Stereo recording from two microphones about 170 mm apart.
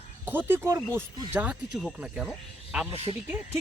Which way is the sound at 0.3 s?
10° right (ahead or behind).